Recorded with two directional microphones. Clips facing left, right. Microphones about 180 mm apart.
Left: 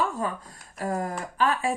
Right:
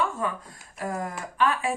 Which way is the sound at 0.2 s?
35° left (ahead or behind).